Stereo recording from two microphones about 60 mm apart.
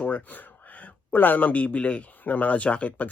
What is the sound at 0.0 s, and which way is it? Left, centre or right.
Speech, left.